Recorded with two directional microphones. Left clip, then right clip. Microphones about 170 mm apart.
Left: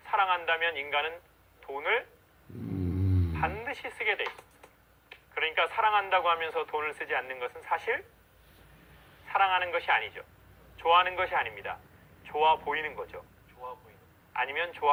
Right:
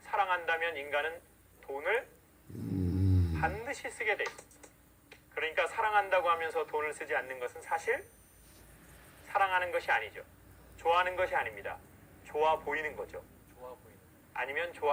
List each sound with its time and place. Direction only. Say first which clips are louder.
0.1 s a sound: left 4 dB; 20° left (ahead or behind)
1.6 s speech: left 3 dB; 20° left (ahead or behind)
3.3 s speech: left 3 dB; 25° left (ahead or behind)
9.3 s speech: left 3 dB; 20° left (ahead or behind)
14.3 s speech: left 4 dB; 20° left (ahead or behind)